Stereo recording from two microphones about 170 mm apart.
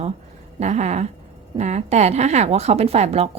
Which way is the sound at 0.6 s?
40° right (ahead or behind).